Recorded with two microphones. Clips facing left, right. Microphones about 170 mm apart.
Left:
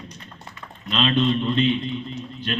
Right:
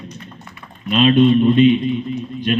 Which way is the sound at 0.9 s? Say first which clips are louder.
Right 9 dB; 15° right (ahead or behind).